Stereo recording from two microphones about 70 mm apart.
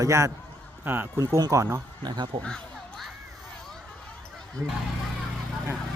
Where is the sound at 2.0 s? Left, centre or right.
Right.